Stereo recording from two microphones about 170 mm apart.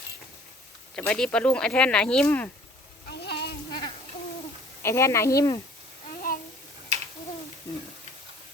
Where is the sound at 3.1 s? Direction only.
70° left (ahead or behind).